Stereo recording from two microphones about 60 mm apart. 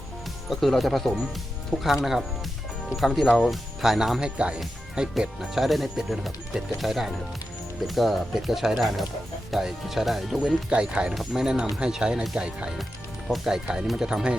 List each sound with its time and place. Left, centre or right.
0.5 s speech: centre
3.8 s speech: centre
4.4 s speech: centre
10.7 s speech: centre
11.1 s speech: centre
13.2 s speech: centre